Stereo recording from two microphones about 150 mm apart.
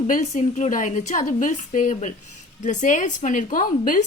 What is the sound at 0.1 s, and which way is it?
A woman's voice, 55° left (ahead or behind).